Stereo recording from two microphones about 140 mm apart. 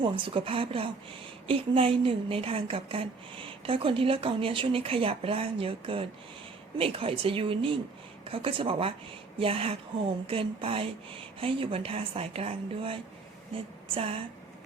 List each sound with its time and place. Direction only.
0.0 s a woman's voice: 40° right (ahead or behind)